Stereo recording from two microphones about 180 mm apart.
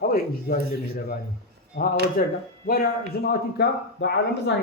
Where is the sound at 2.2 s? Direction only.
50° left (ahead or behind).